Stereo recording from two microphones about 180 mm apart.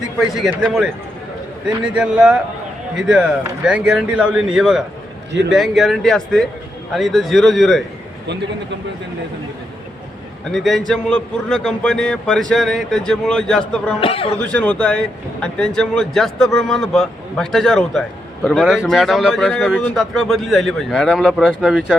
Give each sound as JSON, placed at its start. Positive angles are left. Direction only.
{"t": 0.2, "sound": "a man's voice", "side_deg": 0}
{"t": 10.5, "sound": "a man's voice", "side_deg": 0}
{"t": 14.0, "sound": "speech", "side_deg": 30}
{"t": 14.3, "sound": "a man's voice", "side_deg": 5}